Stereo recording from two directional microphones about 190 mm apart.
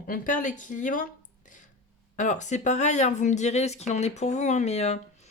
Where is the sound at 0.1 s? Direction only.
45° left (ahead or behind).